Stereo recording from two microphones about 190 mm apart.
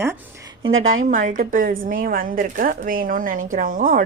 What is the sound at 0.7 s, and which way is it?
Speech, 90° right.